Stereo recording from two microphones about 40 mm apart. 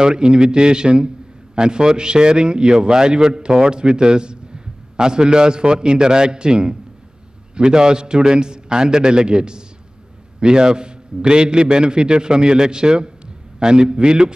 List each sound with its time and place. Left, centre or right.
0.0 s a man's voice: right